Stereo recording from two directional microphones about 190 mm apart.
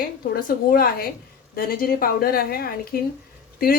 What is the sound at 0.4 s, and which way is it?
A woman's voice, 50° left (ahead or behind).